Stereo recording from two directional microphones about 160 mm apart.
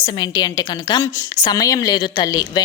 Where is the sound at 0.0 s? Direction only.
25° left (ahead or behind).